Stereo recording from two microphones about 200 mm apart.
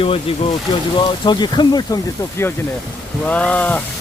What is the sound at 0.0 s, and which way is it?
Speech, 30° left (ahead or behind).